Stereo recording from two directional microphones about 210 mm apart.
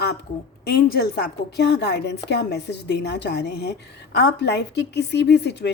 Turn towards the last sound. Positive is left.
turn(degrees=55)  # may be behind; listen again after turning